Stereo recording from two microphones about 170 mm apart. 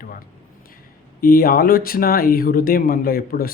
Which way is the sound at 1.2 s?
60° left (ahead or behind).